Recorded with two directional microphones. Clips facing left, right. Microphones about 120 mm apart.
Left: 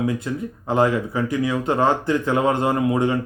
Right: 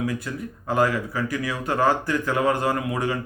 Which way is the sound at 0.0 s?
25° left (ahead or behind).